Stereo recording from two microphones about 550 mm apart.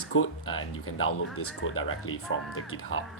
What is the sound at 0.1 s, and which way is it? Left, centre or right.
Speech, left.